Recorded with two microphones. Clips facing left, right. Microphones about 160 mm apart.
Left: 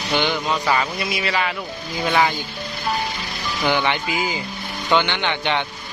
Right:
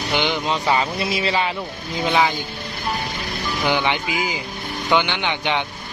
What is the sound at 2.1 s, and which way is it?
Speech, 15° right (ahead or behind).